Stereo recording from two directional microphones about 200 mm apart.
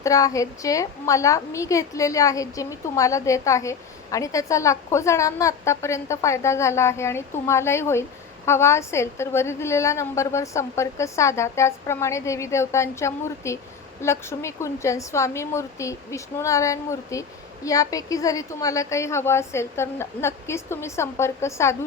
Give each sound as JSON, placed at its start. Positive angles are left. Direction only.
{"t": 0.0, "sound": "a woman's voice", "side_deg": 15}